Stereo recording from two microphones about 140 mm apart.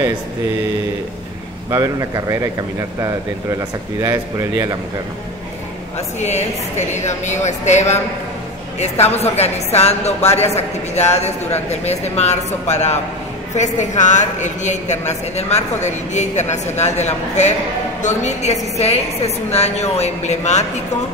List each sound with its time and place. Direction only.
1.7 s speech: 25° right (ahead or behind)
5.9 s a woman's voice: 55° left (ahead or behind)